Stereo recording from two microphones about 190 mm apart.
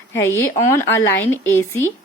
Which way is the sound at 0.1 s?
15° left (ahead or behind).